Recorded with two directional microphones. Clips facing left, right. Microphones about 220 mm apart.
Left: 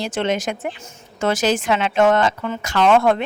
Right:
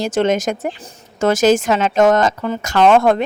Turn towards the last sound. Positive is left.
turn(degrees=-40)  # may be behind; listen again after turning